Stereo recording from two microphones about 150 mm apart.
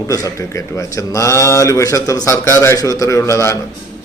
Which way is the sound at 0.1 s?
20° left (ahead or behind).